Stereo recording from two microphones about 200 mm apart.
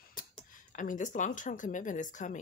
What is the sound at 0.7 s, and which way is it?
Speech, 40° left (ahead or behind).